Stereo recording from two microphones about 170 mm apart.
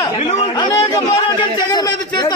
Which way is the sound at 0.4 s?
25° left (ahead or behind).